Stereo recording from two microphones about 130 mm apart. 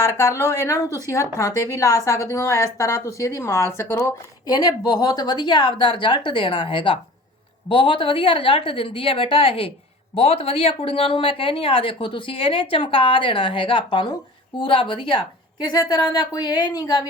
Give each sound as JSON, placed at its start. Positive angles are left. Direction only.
{"t": 0.0, "sound": "a woman's voice", "side_deg": 20}